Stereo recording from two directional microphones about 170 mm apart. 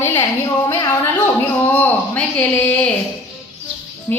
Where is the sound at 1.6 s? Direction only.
10° left (ahead or behind).